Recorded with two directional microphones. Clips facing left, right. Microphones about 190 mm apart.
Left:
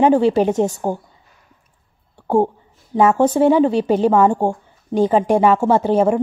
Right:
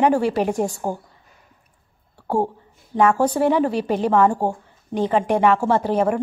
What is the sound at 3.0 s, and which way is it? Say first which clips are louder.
A woman's voice: left 4 dB; 25° left (ahead or behind).